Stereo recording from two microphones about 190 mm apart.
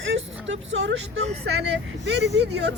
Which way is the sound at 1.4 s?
65° right (ahead or behind).